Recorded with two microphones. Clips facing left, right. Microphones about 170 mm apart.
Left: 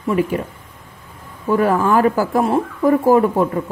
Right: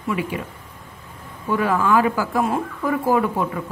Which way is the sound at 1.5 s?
45° left (ahead or behind).